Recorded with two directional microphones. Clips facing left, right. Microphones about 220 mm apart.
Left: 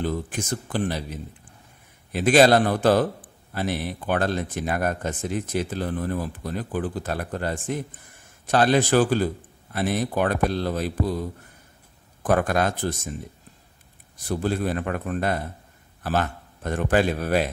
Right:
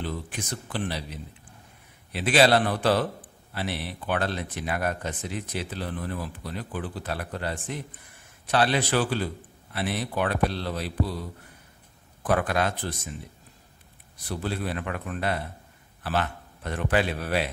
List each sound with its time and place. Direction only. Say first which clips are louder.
0.0 s speech: left 6 dB; 45° left (ahead or behind)
14.1 s speech: left 6 dB; 45° left (ahead or behind)